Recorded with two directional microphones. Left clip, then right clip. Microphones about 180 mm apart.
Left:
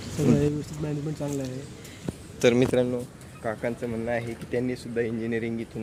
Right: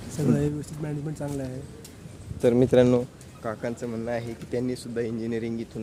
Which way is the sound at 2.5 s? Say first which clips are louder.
Right 3 dB; 35° right (ahead or behind).